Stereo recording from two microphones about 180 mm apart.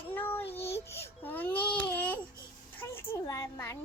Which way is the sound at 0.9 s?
10° left (ahead or behind).